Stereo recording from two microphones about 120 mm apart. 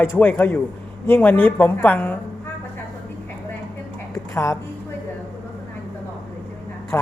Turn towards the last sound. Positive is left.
turn(degrees=25)  # may be behind; listen again after turning